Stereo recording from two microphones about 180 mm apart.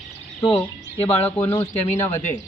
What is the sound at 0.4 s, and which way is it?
Speech, 5° left (ahead or behind).